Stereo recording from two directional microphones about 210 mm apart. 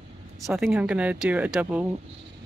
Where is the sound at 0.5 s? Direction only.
Centre (ahead or behind).